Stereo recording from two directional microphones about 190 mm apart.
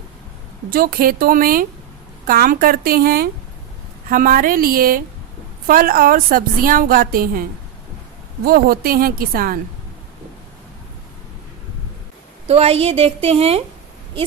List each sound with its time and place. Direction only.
0.7 s a woman's voice: 50° right (ahead or behind)
8.4 s a woman's voice: 50° right (ahead or behind)
12.5 s a woman's voice: 30° right (ahead or behind)